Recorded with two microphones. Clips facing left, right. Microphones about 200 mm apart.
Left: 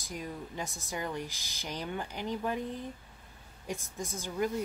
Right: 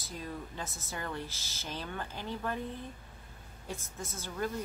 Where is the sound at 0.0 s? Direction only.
15° left (ahead or behind).